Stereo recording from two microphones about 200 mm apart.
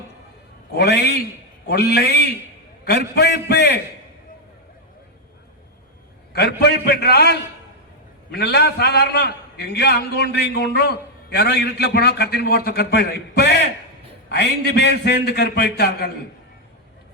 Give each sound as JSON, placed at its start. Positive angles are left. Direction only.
{"t": 0.7, "sound": "a man's voice", "side_deg": 55}
{"t": 6.3, "sound": "a man's voice", "side_deg": 55}